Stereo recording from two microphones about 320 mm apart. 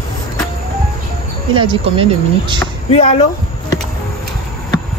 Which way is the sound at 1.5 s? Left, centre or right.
Centre.